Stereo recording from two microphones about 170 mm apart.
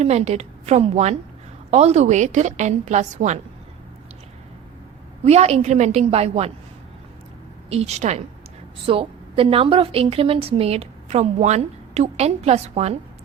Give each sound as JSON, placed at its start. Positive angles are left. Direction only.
{"t": 0.0, "sound": "a woman's voice", "side_deg": -40}
{"t": 5.2, "sound": "a woman's voice", "side_deg": -40}
{"t": 7.7, "sound": "a woman's voice", "side_deg": -40}